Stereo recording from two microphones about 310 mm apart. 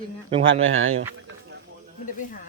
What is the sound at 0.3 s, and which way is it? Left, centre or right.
Speech, centre.